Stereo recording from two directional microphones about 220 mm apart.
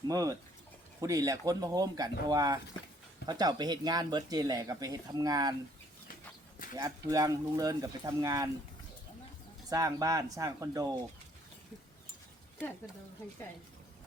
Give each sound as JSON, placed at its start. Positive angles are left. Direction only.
{"t": 0.1, "sound": "speech", "side_deg": -15}
{"t": 6.7, "sound": "speech", "side_deg": -15}
{"t": 9.6, "sound": "speech", "side_deg": -15}